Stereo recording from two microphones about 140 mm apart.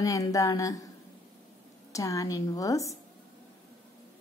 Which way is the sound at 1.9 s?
25° left (ahead or behind).